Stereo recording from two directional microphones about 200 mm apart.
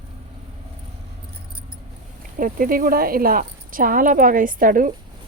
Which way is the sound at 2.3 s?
45° right (ahead or behind).